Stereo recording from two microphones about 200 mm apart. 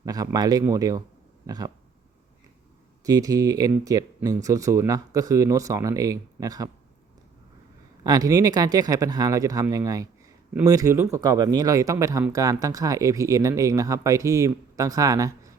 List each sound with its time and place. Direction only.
0.0 s speech: 20° right (ahead or behind)
3.0 s speech: 15° right (ahead or behind)
8.0 s speech: 20° right (ahead or behind)